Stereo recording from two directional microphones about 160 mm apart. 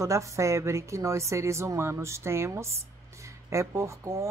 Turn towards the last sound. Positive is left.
turn(degrees=-20)  # may be behind; listen again after turning